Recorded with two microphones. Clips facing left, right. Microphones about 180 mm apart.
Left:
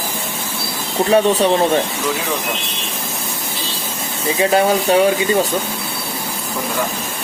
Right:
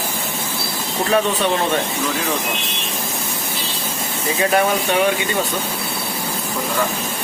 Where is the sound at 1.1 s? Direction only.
35° left (ahead or behind).